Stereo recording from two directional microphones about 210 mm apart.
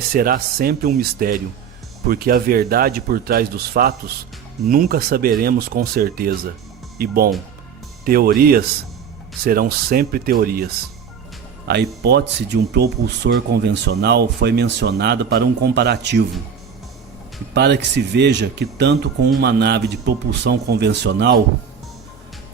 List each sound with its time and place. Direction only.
0.1 s speech: 45° right (ahead or behind)
11.7 s speech: 50° right (ahead or behind)
17.5 s speech: 55° right (ahead or behind)